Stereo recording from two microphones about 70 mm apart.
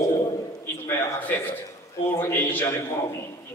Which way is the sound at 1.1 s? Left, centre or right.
Left.